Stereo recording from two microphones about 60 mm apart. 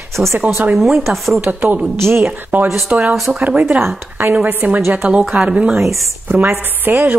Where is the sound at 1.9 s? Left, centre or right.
Right.